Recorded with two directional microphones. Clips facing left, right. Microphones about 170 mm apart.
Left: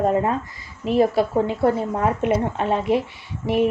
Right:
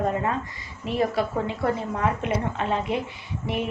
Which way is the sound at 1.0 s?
30° left (ahead or behind).